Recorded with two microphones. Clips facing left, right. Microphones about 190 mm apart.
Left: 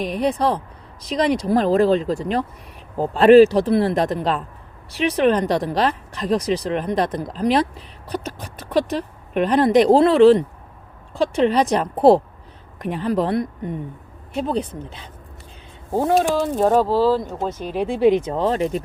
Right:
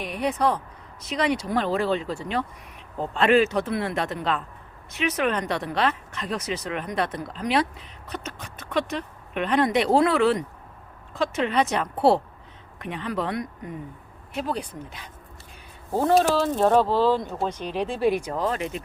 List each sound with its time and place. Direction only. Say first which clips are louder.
0.0 s speech: left 4 dB; 35° left (ahead or behind)
8.0 s a sound: left 7 dB; 35° left (ahead or behind)
8.9 s speech: left 6 dB; 40° left (ahead or behind)
15.9 s speech: left 2 dB; 15° left (ahead or behind); by 18.8 s 35° left (ahead or behind)